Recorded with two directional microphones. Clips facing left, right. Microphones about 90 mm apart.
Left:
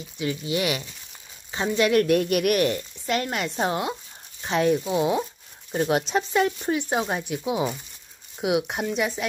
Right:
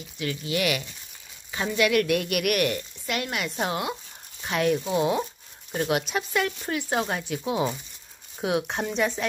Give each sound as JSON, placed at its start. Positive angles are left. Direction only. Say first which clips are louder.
{"t": 0.2, "sound": "speech", "louder": "left 1 dB", "side_deg": 20}